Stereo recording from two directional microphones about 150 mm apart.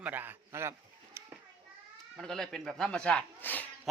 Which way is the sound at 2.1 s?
Centre (ahead or behind).